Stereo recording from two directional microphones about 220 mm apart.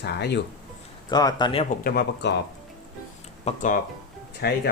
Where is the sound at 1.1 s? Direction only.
20° left (ahead or behind); by 2.3 s 45° left (ahead or behind).